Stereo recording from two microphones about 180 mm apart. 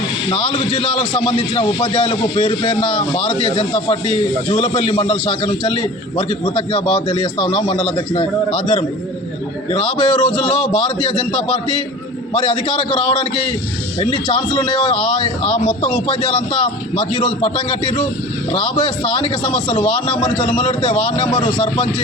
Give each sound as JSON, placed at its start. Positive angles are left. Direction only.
{"t": 0.3, "sound": "a man's voice", "side_deg": 25}
{"t": 20.6, "sound": "a man's voice", "side_deg": 30}